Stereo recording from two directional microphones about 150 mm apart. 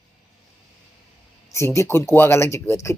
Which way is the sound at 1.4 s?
20° left (ahead or behind).